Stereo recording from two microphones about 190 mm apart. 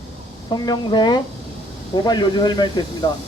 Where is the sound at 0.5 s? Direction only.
20° left (ahead or behind).